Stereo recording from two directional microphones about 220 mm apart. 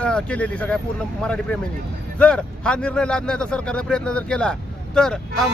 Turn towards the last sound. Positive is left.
turn(degrees=0)  # may be behind; listen again after turning